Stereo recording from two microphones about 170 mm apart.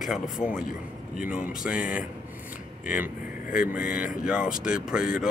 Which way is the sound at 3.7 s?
55° left (ahead or behind).